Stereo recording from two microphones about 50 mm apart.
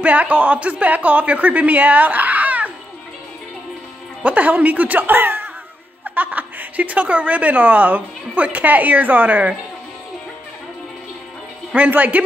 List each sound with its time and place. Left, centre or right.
0.0 s a woman's voice: right
4.2 s a woman's voice: right
11.9 s a woman's voice: right